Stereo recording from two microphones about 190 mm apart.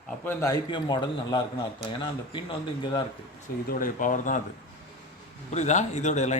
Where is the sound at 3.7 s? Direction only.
45° left (ahead or behind).